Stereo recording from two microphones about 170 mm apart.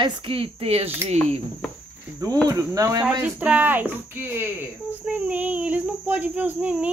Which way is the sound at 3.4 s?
10° right (ahead or behind).